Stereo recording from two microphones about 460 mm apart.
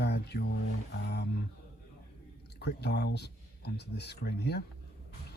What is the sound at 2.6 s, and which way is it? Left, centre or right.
Speech, left.